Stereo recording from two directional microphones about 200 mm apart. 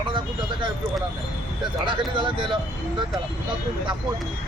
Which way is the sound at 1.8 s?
25° right (ahead or behind).